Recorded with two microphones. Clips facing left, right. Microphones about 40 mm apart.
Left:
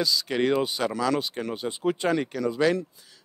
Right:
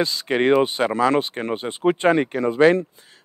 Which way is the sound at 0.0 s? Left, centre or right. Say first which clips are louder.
Right 5 dB; right.